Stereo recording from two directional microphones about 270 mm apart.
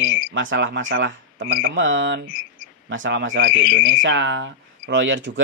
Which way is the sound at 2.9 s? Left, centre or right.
Right.